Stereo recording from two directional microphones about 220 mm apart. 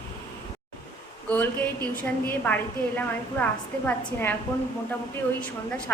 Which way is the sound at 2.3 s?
10° left (ahead or behind).